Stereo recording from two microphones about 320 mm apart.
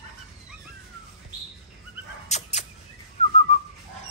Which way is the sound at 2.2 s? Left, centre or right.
Left.